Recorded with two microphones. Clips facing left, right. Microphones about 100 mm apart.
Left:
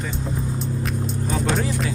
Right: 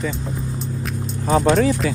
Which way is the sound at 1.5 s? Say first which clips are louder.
Right 8 dB; 90° right.